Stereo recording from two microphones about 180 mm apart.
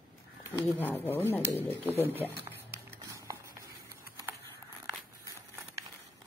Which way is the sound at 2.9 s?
15° right (ahead or behind).